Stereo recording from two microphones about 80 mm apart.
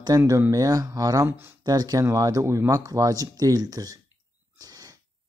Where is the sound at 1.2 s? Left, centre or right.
Right.